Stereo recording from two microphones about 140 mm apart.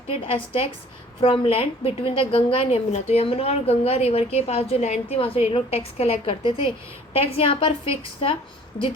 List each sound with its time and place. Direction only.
0.1 s a woman's voice: 40° left (ahead or behind)